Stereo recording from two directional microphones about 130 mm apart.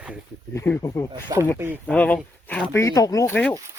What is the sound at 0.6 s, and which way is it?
Speech, 20° left (ahead or behind).